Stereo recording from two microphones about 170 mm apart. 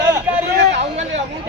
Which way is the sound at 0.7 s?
40° right (ahead or behind).